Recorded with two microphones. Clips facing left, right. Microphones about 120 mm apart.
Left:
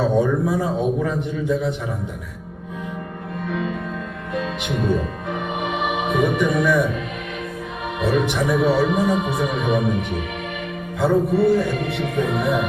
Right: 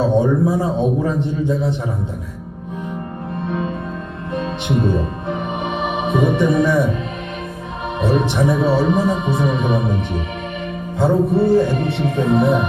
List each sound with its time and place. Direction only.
0.0 s a sound: 30° right (ahead or behind)
3.4 s music: 35° right (ahead or behind)
8.0 s speech: 30° right (ahead or behind)